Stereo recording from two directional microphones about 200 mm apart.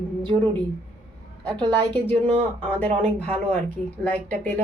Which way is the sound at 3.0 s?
5° left (ahead or behind).